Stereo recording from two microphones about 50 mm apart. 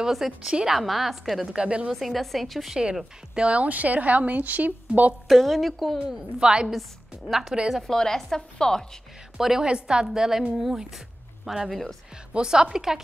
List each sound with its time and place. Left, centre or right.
0.0 s a woman's voice: centre
0.5 s a woman's voice: centre
0.7 s a woman's voice: centre
1.5 s speech: right
1.9 s a woman's voice: centre
3.3 s a woman's voice: right
5.3 s a woman's voice: centre
6.7 s a woman's voice: centre
7.8 s a woman's voice: centre
9.4 s a woman's voice: centre
9.7 s a woman's voice: centre